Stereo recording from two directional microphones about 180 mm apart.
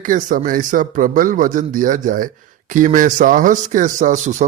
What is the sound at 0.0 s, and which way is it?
Speech, 45° right (ahead or behind).